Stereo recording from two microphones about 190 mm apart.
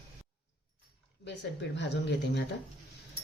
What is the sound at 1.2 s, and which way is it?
Speech, 65° left (ahead or behind).